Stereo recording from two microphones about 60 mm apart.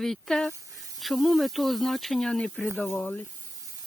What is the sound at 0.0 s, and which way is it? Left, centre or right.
Speech, centre.